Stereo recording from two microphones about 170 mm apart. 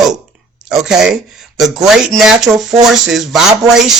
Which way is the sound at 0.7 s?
5° right (ahead or behind).